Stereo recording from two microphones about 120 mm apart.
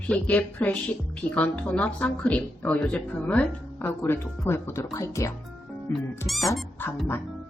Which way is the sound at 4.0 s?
20° left (ahead or behind).